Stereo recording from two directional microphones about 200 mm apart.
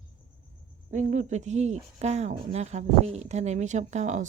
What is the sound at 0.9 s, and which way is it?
A woman's voice, 40° right (ahead or behind).